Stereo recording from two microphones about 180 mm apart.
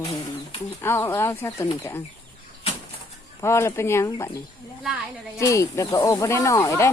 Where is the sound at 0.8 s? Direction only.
15° left (ahead or behind).